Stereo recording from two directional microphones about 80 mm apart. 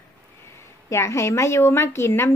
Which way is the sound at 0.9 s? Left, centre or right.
Left.